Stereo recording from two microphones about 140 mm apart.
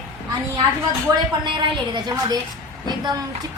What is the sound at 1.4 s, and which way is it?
Speech, 35° right (ahead or behind).